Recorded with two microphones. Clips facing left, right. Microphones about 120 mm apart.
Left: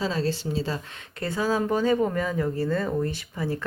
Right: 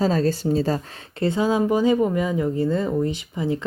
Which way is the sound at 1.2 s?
25° right (ahead or behind).